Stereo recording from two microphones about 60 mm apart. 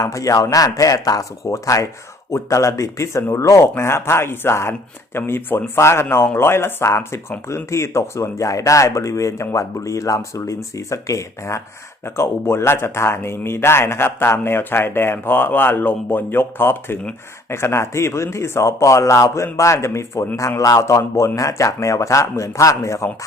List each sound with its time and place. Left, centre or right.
0.0 s speech: left
12.0 s a man's voice: left
20.6 s a man's voice: left